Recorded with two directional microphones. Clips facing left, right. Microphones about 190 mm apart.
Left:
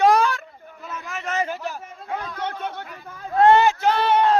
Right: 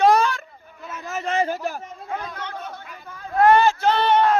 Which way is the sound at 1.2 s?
35° right (ahead or behind).